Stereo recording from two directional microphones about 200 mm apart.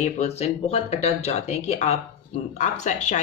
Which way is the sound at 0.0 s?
30° left (ahead or behind).